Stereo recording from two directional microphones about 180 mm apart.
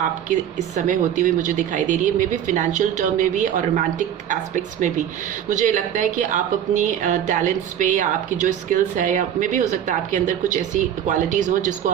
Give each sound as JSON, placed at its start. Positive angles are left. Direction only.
{"t": 0.9, "sound": "speech", "side_deg": -45}